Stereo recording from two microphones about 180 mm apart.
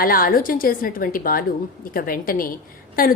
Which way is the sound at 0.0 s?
55° left (ahead or behind).